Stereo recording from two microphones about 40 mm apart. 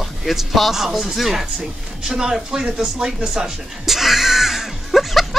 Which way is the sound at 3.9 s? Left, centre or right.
Centre.